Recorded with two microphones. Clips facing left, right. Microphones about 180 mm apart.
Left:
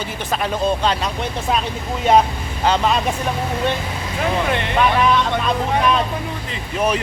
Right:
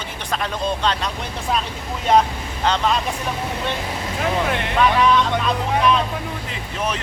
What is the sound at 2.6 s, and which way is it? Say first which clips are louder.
Speech: left 2 dB; 5° left (ahead or behind).